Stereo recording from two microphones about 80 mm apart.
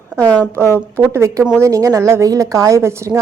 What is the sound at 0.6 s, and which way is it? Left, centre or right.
A woman's voice, right.